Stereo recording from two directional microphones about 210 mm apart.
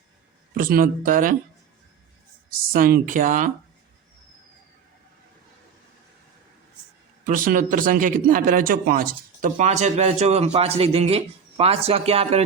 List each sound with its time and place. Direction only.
0.5 s speech: 40° right (ahead or behind)
2.7 s speech: 40° right (ahead or behind)
7.3 s speech: 40° right (ahead or behind)